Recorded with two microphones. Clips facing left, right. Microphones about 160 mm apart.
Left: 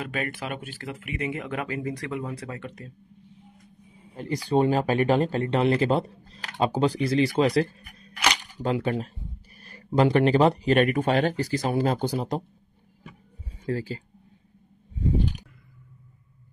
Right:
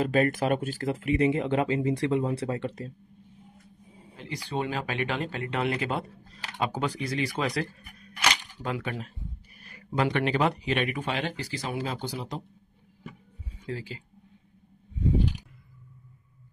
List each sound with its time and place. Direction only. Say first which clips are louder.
0.0 s speech: right 7 dB; 40° right (ahead or behind)
4.2 s speech: left 9 dB; 40° left (ahead or behind)
13.7 s speech: left 7 dB; 40° left (ahead or behind)